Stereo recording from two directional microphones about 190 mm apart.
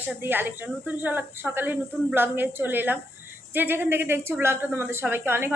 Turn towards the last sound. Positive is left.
turn(degrees=-10)  # may be behind; listen again after turning